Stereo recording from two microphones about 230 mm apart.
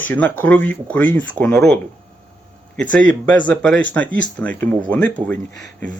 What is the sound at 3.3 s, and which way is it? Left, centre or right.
Speech, centre.